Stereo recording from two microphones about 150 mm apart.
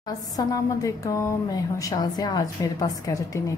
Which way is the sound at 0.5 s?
25° left (ahead or behind).